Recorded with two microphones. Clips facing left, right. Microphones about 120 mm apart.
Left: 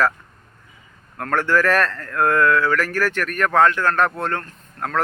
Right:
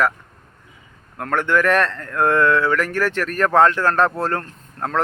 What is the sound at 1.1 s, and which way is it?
Speech, 20° right (ahead or behind).